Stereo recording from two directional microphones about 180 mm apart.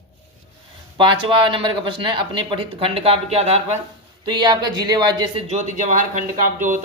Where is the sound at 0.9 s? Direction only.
25° right (ahead or behind).